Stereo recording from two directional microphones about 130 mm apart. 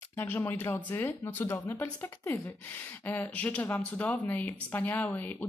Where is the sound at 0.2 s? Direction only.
15° left (ahead or behind).